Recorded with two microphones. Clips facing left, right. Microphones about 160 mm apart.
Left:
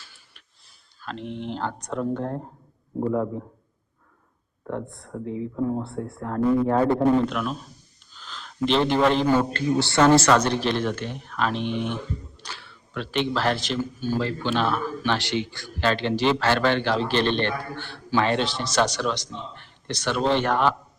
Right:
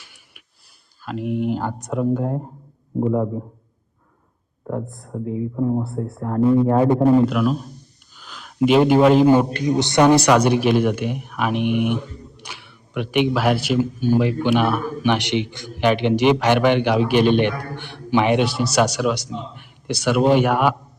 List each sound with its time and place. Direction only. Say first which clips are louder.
0.0 s a sound: right 2 dB; 15° right (ahead or behind)
1.0 s speech: right 9 dB; 5° right (ahead or behind)
4.6 s speech: right 4 dB; 15° right (ahead or behind)
4.9 s speech: right 4 dB; centre (ahead or behind)
6.6 s speech: right 4 dB; 15° right (ahead or behind)
8.1 s a sound: even; 10° right (ahead or behind)
9.3 s speech: right 5 dB; 15° right (ahead or behind)